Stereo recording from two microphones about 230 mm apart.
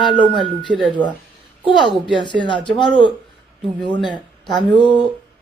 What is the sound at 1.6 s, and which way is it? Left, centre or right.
Speech, left.